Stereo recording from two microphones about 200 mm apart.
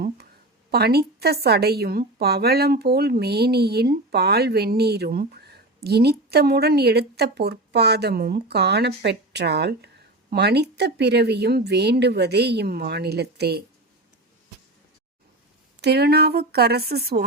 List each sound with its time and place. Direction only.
0.7 s a woman's voice: 50° right (ahead or behind)
15.8 s a woman's voice: 55° right (ahead or behind)